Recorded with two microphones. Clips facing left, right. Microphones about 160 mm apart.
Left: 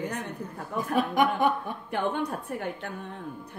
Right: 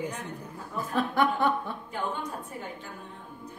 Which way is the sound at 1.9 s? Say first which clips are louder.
Left 6 dB; 65° left (ahead or behind).